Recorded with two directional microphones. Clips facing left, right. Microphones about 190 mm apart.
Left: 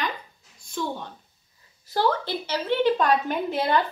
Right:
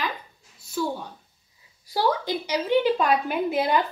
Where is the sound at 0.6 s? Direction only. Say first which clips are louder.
Right 2 dB; 5° right (ahead or behind).